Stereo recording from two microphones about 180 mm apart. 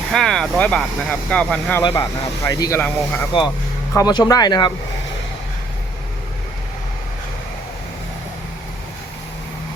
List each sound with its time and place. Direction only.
0.1 s speech: centre (ahead or behind)
1.8 s speech: 20° left (ahead or behind)
3.9 s speech: 20° left (ahead or behind)